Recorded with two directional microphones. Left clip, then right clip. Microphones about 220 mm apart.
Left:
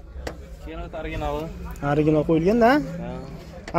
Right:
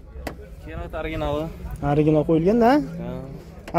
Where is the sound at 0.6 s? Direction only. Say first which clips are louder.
Right 2 dB; 40° right (ahead or behind).